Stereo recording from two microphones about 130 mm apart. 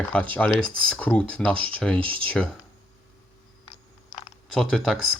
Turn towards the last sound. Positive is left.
turn(degrees=5)  # may be behind; listen again after turning